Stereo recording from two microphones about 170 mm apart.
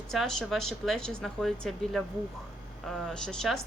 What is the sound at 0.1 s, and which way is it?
Speech, centre (ahead or behind).